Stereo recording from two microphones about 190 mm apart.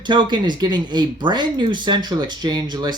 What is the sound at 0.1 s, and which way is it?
Speech, 25° right (ahead or behind).